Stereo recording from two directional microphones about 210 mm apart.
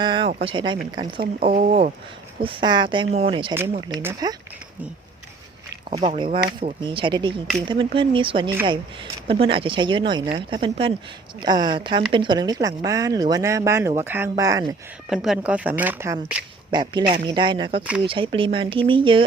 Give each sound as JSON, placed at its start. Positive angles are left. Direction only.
{"t": 0.0, "sound": "a sound", "side_deg": -20}
{"t": 0.4, "sound": "speech", "side_deg": -20}
{"t": 1.5, "sound": "speech", "side_deg": -40}
{"t": 2.4, "sound": "speech", "side_deg": -25}
{"t": 6.0, "sound": "speech", "side_deg": -25}
{"t": 15.1, "sound": "speech", "side_deg": 0}
{"t": 16.7, "sound": "speech", "side_deg": -20}